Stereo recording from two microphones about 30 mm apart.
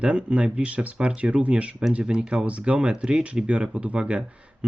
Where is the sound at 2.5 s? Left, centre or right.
Right.